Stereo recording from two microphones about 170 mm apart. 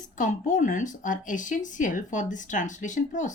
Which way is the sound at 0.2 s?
50° left (ahead or behind).